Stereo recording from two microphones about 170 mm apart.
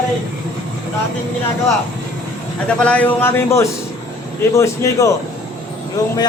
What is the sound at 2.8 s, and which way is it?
A man's voice, 5° left (ahead or behind).